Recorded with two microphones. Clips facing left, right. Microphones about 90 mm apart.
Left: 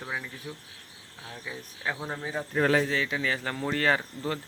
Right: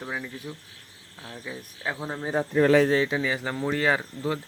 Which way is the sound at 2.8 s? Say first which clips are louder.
Right 6 dB; 30° right (ahead or behind).